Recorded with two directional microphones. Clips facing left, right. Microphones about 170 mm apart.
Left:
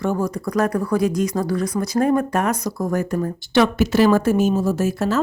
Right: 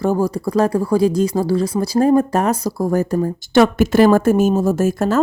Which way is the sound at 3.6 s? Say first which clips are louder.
Right 4 dB; 50° right (ahead or behind).